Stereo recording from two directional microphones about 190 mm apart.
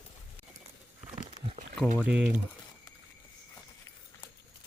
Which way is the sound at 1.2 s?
30° right (ahead or behind).